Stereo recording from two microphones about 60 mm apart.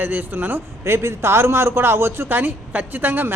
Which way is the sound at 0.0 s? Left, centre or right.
Right.